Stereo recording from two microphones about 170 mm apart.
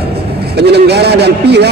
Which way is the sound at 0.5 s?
75° right (ahead or behind).